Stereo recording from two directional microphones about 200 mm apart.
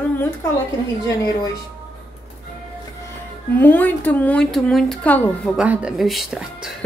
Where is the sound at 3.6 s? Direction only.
10° left (ahead or behind).